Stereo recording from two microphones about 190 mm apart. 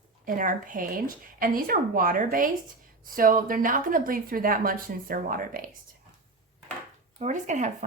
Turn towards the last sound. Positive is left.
turn(degrees=-40)  # may be behind; listen again after turning